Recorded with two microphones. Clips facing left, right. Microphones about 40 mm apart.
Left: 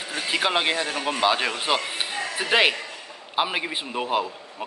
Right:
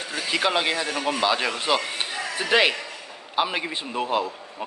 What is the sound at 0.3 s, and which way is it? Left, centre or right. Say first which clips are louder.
A man's voice: even; centre.